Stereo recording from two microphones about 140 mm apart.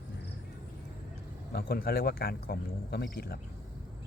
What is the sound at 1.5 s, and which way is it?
Speech, 90° left.